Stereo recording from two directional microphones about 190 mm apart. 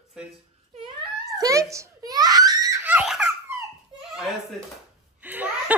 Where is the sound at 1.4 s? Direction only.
15° right (ahead or behind).